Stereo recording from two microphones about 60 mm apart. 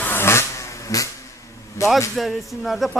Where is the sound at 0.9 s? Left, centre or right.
Left.